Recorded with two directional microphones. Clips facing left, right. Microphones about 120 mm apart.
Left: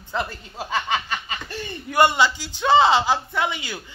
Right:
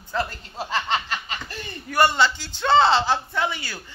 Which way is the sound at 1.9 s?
15° left (ahead or behind).